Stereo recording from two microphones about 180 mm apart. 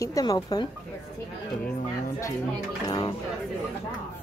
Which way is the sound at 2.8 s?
20° left (ahead or behind).